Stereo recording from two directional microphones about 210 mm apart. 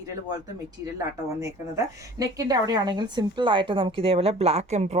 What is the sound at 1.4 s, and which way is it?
A woman's voice, 15° right (ahead or behind).